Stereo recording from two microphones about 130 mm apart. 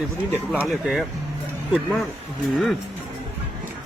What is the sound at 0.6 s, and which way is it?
Speech, centre (ahead or behind).